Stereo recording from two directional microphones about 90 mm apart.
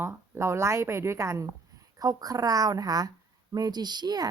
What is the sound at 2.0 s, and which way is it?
A woman's voice, 45° right (ahead or behind).